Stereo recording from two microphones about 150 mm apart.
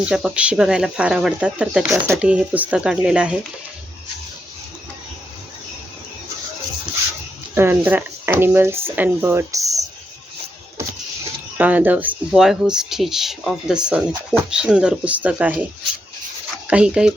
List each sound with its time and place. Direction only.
0.0 s speech: 5° right (ahead or behind)
7.5 s speech: 15° right (ahead or behind)
11.5 s speech: 10° right (ahead or behind)
16.6 s speech: 10° right (ahead or behind)